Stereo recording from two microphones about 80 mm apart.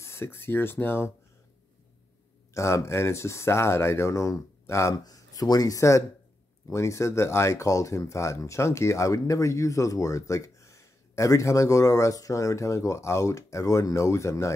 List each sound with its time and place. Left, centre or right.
0.0 s speech: left
2.5 s speech: left
4.9 s speech: left